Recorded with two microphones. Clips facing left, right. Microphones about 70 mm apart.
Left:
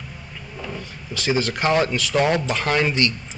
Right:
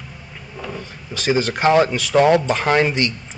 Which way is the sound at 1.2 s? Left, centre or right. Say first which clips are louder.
Right 4 dB; right.